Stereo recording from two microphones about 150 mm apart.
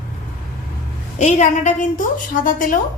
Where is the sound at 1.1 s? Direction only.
55° left (ahead or behind).